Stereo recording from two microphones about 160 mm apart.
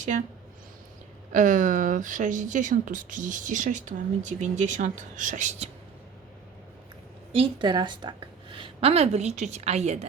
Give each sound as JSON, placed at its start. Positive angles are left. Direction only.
{"t": 0.0, "sound": "a woman's voice", "side_deg": -55}
{"t": 1.3, "sound": "a woman's voice", "side_deg": -55}
{"t": 7.3, "sound": "a woman's voice", "side_deg": -30}